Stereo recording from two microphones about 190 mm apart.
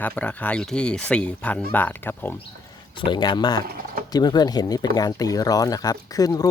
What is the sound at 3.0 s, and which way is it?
Speech, 25° left (ahead or behind).